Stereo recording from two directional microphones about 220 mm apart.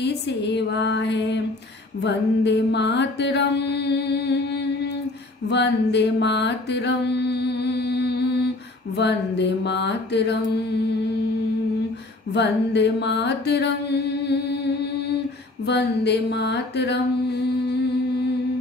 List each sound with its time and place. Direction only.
0.0 s music: 50° left (ahead or behind)
5.5 s mantra: 50° left (ahead or behind)
8.9 s music: 50° left (ahead or behind)
12.3 s music: 50° left (ahead or behind)